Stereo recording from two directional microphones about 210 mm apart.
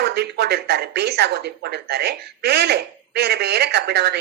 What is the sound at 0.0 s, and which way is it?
Speech, 50° right (ahead or behind).